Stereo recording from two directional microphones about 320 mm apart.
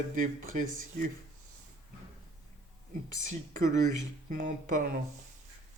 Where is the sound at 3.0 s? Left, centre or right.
Right.